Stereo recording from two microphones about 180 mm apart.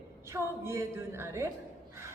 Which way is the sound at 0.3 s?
15° right (ahead or behind).